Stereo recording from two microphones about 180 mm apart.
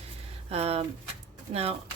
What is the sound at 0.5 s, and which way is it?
Speech, 35° right (ahead or behind).